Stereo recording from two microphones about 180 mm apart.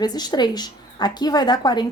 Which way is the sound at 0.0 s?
20° left (ahead or behind).